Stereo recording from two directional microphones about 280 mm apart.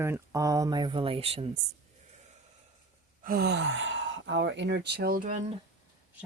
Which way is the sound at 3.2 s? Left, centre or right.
Right.